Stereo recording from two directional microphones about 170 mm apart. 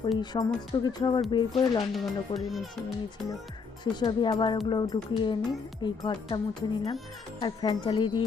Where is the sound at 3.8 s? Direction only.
25° left (ahead or behind).